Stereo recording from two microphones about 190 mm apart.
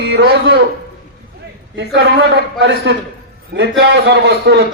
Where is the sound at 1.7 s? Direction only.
65° right (ahead or behind); by 2.9 s 80° right.